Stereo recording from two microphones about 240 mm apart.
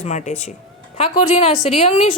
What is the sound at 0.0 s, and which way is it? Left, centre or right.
A woman's voice, left.